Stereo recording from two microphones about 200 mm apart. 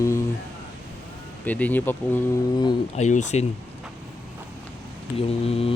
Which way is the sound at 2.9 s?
35° left (ahead or behind).